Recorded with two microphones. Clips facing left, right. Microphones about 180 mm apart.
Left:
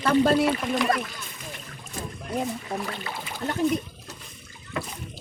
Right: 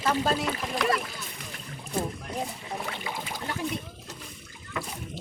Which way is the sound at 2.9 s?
15° right (ahead or behind).